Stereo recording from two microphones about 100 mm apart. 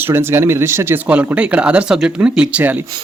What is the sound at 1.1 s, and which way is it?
Speech, 15° right (ahead or behind).